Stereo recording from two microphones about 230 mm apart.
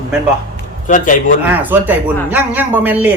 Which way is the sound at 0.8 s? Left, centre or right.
Left.